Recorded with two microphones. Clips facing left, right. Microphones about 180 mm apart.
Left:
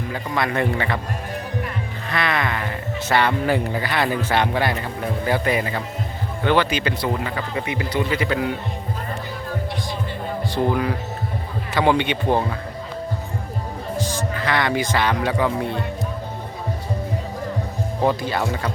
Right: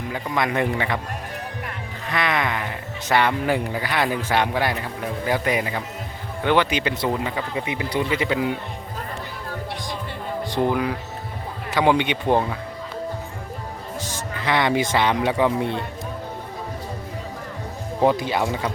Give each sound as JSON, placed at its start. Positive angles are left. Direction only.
{"t": 0.1, "sound": "speech", "side_deg": -15}
{"t": 2.0, "sound": "speech", "side_deg": -15}
{"t": 11.8, "sound": "speech", "side_deg": -10}
{"t": 14.2, "sound": "speech", "side_deg": -20}
{"t": 18.0, "sound": "speech", "side_deg": -15}